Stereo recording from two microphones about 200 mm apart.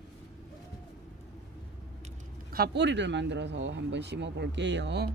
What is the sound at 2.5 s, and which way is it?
Speech, 55° right (ahead or behind).